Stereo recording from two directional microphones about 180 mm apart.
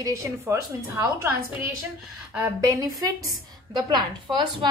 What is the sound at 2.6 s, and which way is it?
A woman's voice, 20° right (ahead or behind).